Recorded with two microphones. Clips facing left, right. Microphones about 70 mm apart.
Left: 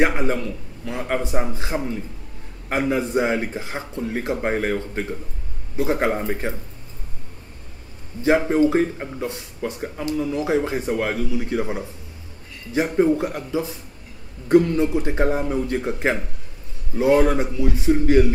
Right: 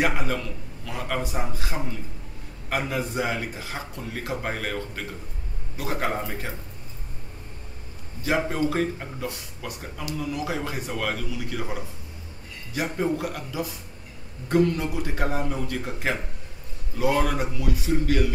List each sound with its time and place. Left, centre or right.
0.0 s speech: left
8.2 s speech: left